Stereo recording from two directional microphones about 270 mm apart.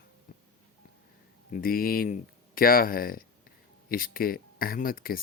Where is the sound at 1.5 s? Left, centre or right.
Left.